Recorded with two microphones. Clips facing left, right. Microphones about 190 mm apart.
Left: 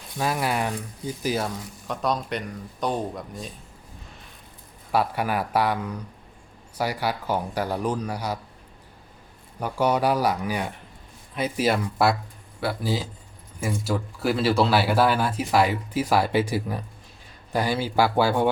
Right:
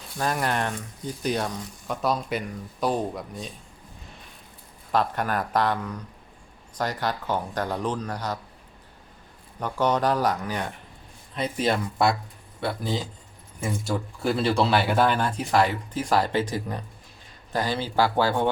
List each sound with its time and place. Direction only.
0.2 s speech: 5° left (ahead or behind)
4.9 s speech: 10° left (ahead or behind)
9.6 s speech: 10° left (ahead or behind)